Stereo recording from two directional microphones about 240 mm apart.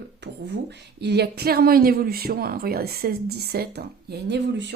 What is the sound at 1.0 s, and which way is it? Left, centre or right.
Speech, right.